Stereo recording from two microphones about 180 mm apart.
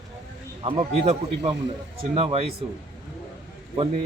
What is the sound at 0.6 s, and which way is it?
Speech, 30° right (ahead or behind).